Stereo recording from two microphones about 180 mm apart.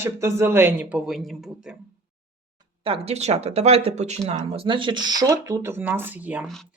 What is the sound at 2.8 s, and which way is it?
Speech, 35° right (ahead or behind).